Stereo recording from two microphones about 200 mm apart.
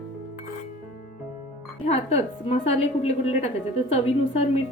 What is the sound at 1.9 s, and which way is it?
A woman's voice, 30° left (ahead or behind).